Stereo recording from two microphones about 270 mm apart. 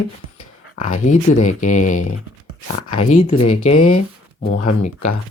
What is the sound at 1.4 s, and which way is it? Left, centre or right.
Speech, left.